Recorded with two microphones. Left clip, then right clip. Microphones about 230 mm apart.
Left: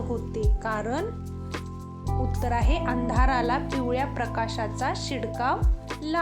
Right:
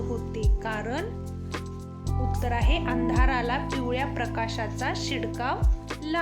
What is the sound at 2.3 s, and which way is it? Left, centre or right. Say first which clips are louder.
Speech: even; centre.